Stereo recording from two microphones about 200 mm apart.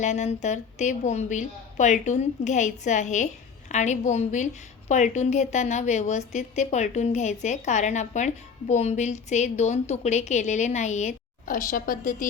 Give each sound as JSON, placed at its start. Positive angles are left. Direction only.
{"t": 0.0, "sound": "a woman's voice", "side_deg": 35}